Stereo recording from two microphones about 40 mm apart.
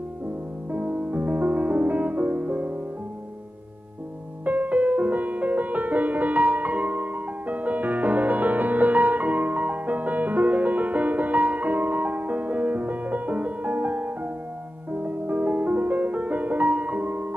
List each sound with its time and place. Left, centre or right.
0.7 s music: right
4.5 s music: right